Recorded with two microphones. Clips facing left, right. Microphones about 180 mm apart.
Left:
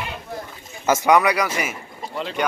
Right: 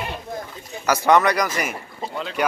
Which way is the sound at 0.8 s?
20° left (ahead or behind).